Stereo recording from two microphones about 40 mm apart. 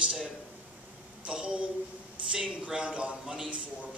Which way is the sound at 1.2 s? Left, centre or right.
Right.